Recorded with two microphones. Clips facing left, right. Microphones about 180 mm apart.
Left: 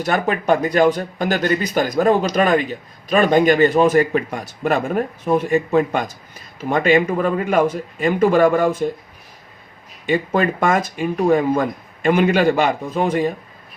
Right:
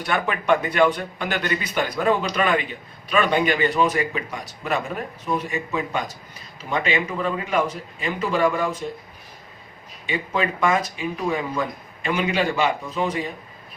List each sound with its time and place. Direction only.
0.0 s speech: 40° left (ahead or behind)
10.1 s speech: 50° left (ahead or behind)